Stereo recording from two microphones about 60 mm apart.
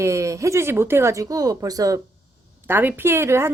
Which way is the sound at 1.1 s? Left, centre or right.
Right.